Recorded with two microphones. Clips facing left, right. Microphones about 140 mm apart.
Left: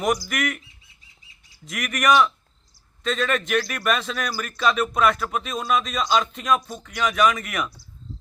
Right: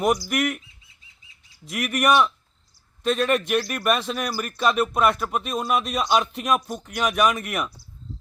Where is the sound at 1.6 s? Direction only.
5° right (ahead or behind).